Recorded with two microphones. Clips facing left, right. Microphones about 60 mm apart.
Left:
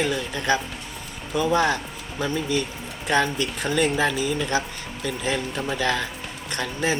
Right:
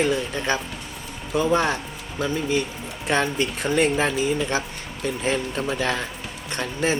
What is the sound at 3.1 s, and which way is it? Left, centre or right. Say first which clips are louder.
Speech: even; right.